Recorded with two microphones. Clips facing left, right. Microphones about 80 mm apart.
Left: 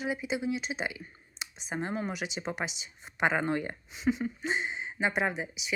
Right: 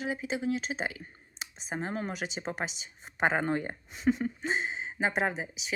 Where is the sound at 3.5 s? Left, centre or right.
Centre.